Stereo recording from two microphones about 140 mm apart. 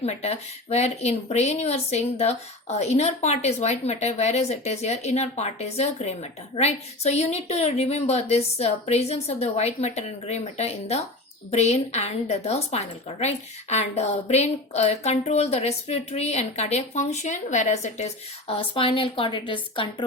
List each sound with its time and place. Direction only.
0.0 s a woman's voice: 50° left (ahead or behind)